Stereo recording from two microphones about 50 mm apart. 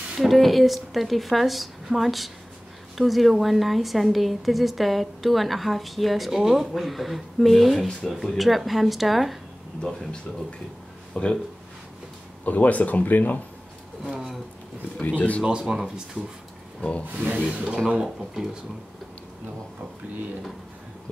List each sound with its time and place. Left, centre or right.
0.3 s a woman's voice: centre
11.1 s speech: left
12.4 s speech: left
15.0 s speech: left
15.6 s speech: centre
17.1 s speech: right
17.5 s speech: centre
18.0 s speech: centre